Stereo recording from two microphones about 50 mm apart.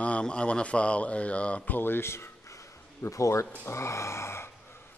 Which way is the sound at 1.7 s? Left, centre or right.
Left.